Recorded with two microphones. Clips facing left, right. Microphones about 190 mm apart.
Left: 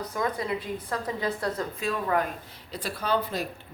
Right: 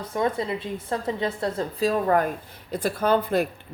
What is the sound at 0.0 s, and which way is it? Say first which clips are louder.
A woman's voice: right 4 dB; 25° right (ahead or behind).